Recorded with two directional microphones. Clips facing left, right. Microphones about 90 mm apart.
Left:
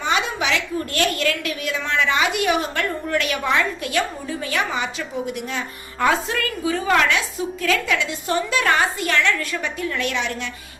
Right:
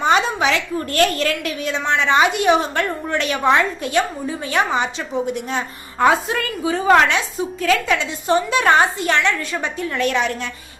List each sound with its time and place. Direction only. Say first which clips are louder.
0.0 s a woman's voice: right 5 dB; 40° right (ahead or behind)
6.1 s a woman's voice: right 3 dB; 25° right (ahead or behind); by 10.5 s 40° right (ahead or behind)